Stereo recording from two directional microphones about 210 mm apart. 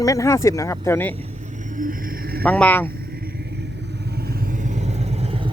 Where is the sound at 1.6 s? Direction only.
40° right (ahead or behind).